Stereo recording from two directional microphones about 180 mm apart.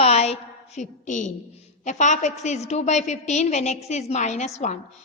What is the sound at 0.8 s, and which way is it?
A woman's voice, 45° left (ahead or behind).